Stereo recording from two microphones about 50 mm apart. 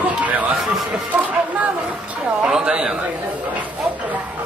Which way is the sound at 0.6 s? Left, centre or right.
Centre.